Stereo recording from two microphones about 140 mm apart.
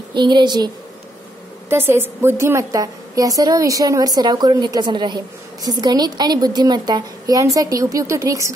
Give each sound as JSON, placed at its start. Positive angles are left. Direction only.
{"t": 0.1, "sound": "a woman's voice", "side_deg": -30}
{"t": 1.7, "sound": "a woman's voice", "side_deg": -15}